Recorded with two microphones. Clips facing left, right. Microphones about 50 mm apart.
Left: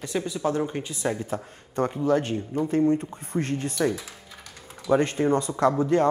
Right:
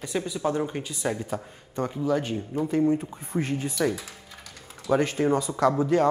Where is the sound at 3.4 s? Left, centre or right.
Centre.